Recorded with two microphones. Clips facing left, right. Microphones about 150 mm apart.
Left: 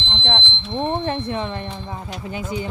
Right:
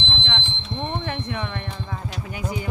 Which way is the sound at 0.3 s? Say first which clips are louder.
Left 5 dB; 40° left (ahead or behind).